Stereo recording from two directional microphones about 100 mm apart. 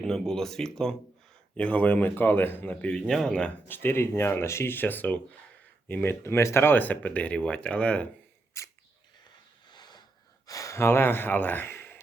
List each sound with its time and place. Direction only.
0.0 s speech: 5° left (ahead or behind)
3.1 s speech: 5° left (ahead or behind)
3.7 s speech: 25° left (ahead or behind)
8.6 s sneeze: 30° left (ahead or behind)
9.7 s a sound: 45° left (ahead or behind)
10.4 s speech: 35° left (ahead or behind)